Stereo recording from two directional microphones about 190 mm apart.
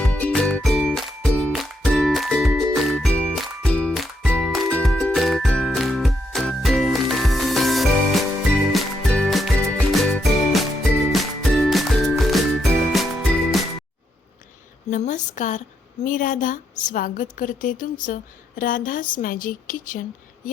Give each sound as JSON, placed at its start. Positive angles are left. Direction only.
{"t": 0.0, "sound": "music", "side_deg": 5}
{"t": 14.8, "sound": "a sound", "side_deg": 40}
{"t": 16.0, "sound": "a woman's voice", "side_deg": 45}